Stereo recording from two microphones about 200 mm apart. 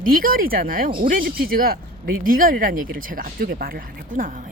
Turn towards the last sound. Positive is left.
turn(degrees=-45)  # may be behind; listen again after turning